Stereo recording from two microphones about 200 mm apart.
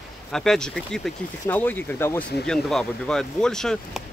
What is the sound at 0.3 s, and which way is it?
Speech, centre (ahead or behind).